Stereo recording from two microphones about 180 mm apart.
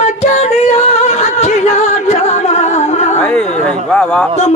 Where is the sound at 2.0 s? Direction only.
40° left (ahead or behind).